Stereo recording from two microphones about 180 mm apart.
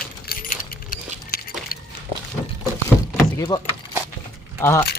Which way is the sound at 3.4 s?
25° left (ahead or behind).